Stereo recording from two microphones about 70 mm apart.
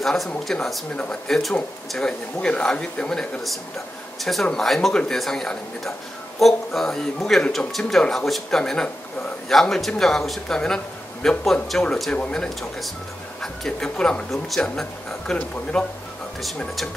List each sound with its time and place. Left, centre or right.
0.0 s a man's voice: centre
0.9 s a man's voice: centre